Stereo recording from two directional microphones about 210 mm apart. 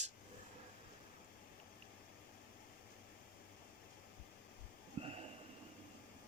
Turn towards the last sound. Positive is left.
turn(degrees=-25)  # may be behind; listen again after turning